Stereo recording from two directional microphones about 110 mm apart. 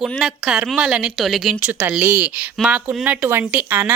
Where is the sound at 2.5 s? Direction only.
5° right (ahead or behind).